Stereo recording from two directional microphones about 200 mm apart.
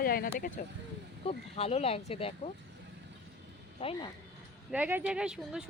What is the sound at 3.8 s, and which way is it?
Speech, 30° left (ahead or behind).